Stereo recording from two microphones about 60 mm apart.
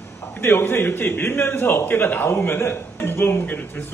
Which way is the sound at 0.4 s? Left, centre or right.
Left.